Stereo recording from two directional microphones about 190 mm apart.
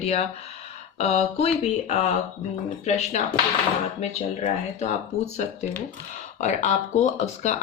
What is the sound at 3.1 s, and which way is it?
Speech, 35° left (ahead or behind).